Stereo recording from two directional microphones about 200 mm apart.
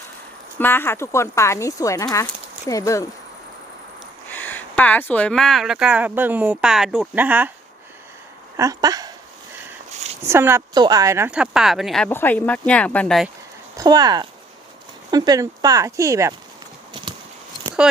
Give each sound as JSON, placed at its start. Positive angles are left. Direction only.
{"t": 0.6, "sound": "speech", "side_deg": 10}
{"t": 4.3, "sound": "speech", "side_deg": 10}
{"t": 8.5, "sound": "speech", "side_deg": -15}
{"t": 9.9, "sound": "a sound", "side_deg": -35}
{"t": 10.2, "sound": "speech", "side_deg": -10}
{"t": 13.7, "sound": "speech", "side_deg": -20}